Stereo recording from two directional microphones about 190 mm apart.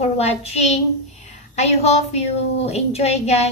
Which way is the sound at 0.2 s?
35° left (ahead or behind).